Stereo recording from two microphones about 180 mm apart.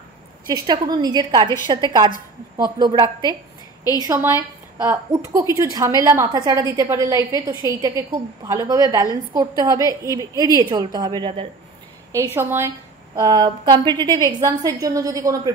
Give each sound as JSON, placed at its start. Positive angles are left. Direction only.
{"t": 0.5, "sound": "a woman's voice", "side_deg": -25}
{"t": 12.4, "sound": "a woman's voice", "side_deg": -15}